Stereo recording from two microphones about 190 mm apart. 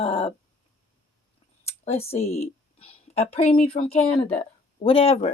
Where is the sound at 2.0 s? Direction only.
35° left (ahead or behind).